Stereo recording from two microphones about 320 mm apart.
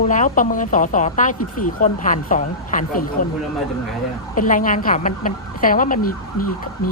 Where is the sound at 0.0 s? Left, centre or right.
Left.